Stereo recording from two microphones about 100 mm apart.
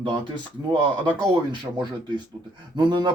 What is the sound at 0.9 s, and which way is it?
Speech, 55° right (ahead or behind).